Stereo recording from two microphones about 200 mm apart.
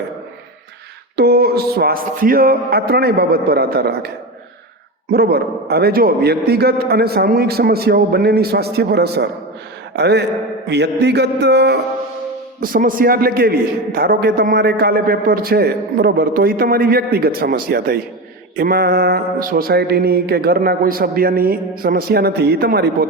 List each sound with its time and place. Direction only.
1.1 s a man's voice: 50° right (ahead or behind)
5.1 s a man's voice: 50° right (ahead or behind)
12.5 s a man's voice: 45° right (ahead or behind)